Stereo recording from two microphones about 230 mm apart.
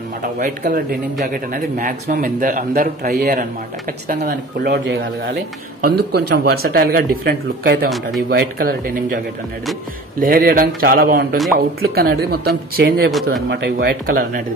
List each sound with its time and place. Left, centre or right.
0.2 s a man's voice: right
10.2 s a man's voice: right